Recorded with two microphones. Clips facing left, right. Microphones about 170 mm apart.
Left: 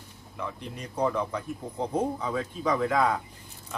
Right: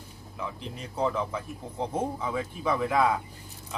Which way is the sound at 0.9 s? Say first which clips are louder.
Left 1 dB; 5° right (ahead or behind).